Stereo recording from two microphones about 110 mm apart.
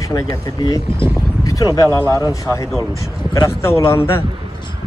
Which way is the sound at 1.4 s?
30° left (ahead or behind).